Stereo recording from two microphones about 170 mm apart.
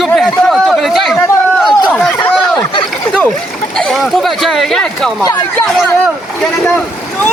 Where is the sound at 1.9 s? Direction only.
10° left (ahead or behind).